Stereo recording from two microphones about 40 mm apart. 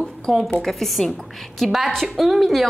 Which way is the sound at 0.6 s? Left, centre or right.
Centre.